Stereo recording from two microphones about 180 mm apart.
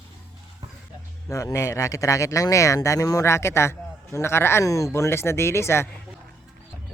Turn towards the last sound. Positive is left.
turn(degrees=15)  # may be behind; listen again after turning